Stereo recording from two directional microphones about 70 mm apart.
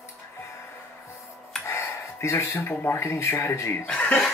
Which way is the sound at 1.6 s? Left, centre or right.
Left.